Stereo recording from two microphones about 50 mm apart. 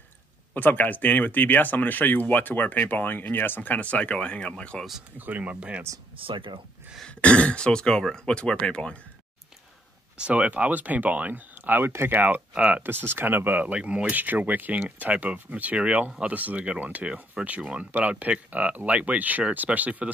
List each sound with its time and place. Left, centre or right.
0.6 s speech: left
5.1 s speech: right
7.1 s speech: left
10.1 s speech: right
13.6 s speech: right